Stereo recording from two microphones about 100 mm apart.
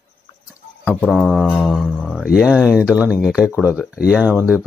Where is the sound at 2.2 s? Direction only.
10° right (ahead or behind).